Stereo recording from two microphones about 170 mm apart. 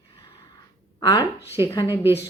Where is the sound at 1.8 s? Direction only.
15° right (ahead or behind).